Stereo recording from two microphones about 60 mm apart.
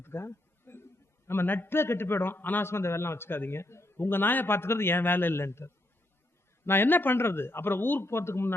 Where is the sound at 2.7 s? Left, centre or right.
Left.